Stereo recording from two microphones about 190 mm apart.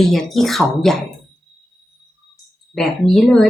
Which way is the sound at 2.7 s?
Centre (ahead or behind).